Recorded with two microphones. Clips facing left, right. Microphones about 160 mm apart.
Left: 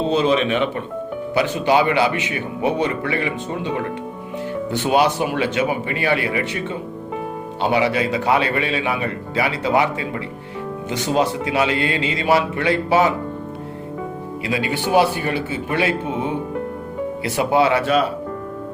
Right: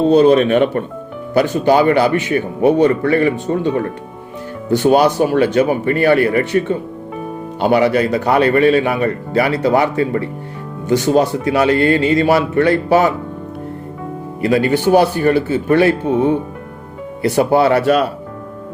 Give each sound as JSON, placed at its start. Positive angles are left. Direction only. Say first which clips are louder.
{"t": 0.1, "sound": "a man's voice", "louder": "right 8 dB", "side_deg": -45}
{"t": 14.4, "sound": "a man's voice", "louder": "right 9 dB", "side_deg": -45}
{"t": 17.2, "sound": "a man's voice", "louder": "right 5 dB", "side_deg": -40}